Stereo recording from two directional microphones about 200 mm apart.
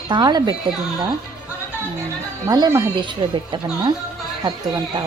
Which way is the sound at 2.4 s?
20° right (ahead or behind).